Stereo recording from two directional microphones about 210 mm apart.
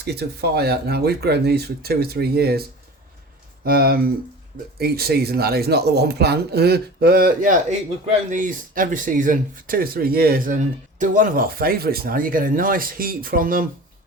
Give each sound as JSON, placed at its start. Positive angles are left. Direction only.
{"t": 0.0, "sound": "speech", "side_deg": -50}